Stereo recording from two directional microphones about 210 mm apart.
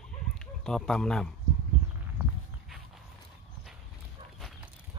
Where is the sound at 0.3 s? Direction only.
Centre (ahead or behind).